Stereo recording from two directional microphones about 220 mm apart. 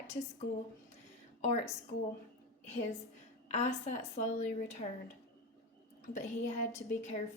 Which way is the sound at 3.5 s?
30° left (ahead or behind).